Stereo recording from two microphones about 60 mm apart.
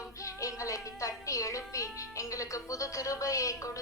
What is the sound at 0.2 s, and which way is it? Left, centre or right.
Music, left.